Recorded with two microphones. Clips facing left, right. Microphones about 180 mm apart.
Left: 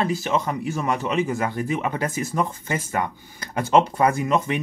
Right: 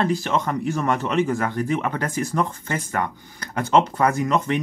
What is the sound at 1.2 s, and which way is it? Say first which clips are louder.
Speech: right 2 dB; 20° left (ahead or behind).